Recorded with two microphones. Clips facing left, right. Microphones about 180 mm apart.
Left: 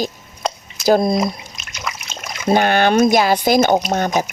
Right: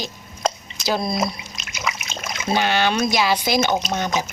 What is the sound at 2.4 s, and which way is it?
A woman's voice, 50° left (ahead or behind).